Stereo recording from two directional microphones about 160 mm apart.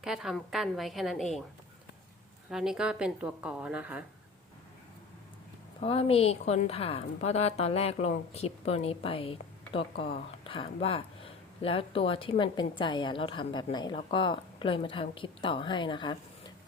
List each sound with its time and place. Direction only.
0.0 s a woman's voice: 5° right (ahead or behind)
2.5 s a woman's voice: 5° right (ahead or behind)
5.8 s a woman's voice: 35° left (ahead or behind)